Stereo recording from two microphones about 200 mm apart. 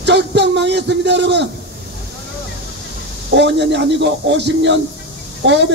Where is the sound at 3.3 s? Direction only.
60° right (ahead or behind).